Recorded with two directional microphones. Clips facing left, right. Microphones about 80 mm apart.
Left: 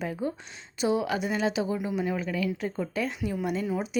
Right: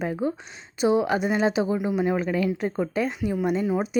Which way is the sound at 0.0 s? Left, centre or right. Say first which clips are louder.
Right 5 dB; right.